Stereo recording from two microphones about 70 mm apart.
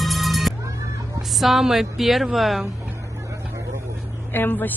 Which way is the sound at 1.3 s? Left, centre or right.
Centre.